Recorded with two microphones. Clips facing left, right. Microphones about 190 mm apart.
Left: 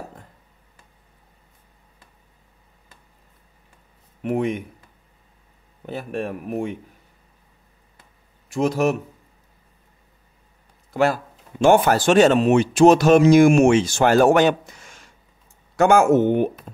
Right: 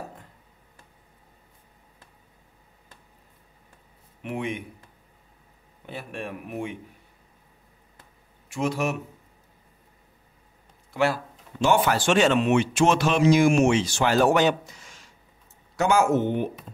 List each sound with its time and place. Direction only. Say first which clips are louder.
4.2 s speech: left 8 dB; 40° left (ahead or behind)
5.9 s speech: left 7 dB; 40° left (ahead or behind)
8.5 s speech: left 6 dB; 40° left (ahead or behind)
10.9 s speech: left 4 dB; 45° left (ahead or behind)